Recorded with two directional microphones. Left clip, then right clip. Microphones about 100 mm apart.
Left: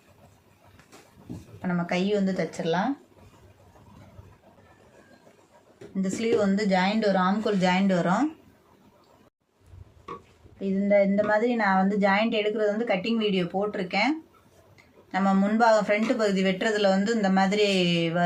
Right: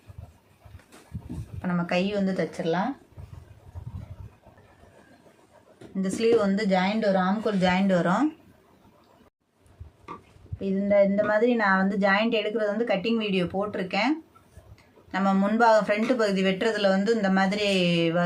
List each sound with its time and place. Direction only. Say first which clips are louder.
1.6 s speech: right 1 dB; 35° right (ahead or behind)
2.6 s speech: left 1 dB; 10° right (ahead or behind)
5.9 s speech: right 3 dB; 30° right (ahead or behind)
6.6 s speech: even; 10° right (ahead or behind)
10.6 s speech: right 1 dB; 30° right (ahead or behind)